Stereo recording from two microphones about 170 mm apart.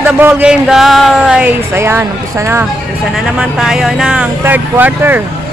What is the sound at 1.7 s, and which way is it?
Speech, 15° right (ahead or behind).